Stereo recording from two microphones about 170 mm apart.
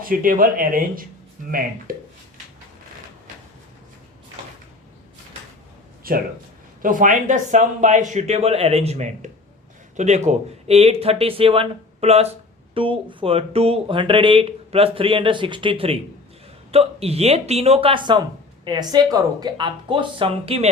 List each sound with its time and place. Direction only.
0.0 s speech: 55° right (ahead or behind)
6.0 s a sound: 60° right (ahead or behind)
6.8 s speech: 50° right (ahead or behind); by 20.7 s 35° right (ahead or behind)